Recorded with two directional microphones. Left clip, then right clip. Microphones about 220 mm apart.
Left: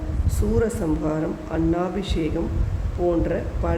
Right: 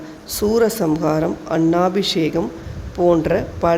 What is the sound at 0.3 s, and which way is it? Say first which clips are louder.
A man's voice: right 7 dB; 30° right (ahead or behind).